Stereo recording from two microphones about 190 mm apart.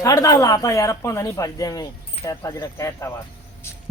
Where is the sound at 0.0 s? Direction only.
15° left (ahead or behind).